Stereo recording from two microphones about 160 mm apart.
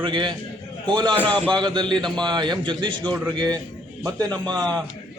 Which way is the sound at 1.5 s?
25° right (ahead or behind).